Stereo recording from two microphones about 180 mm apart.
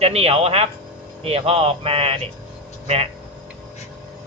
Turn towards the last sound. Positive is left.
turn(degrees=-35)  # may be behind; listen again after turning